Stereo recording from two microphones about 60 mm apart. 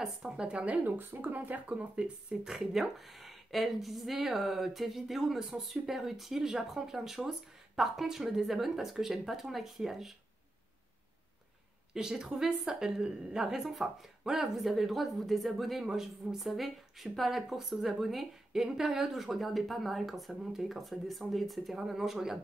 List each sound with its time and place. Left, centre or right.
0.0 s a woman's voice: centre
11.9 s a woman's voice: centre